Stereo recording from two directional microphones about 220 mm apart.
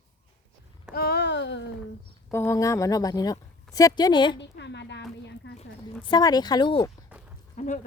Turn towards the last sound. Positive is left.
turn(degrees=30)  # may be behind; listen again after turning